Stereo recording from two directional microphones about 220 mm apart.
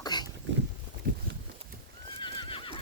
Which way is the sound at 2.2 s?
20° left (ahead or behind).